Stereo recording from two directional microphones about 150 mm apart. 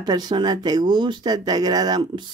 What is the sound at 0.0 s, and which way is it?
Speech, 30° right (ahead or behind).